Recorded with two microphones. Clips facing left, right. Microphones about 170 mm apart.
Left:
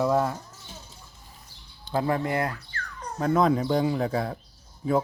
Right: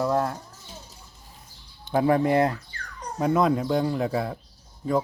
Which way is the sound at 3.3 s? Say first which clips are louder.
Left 1 dB; centre (ahead or behind).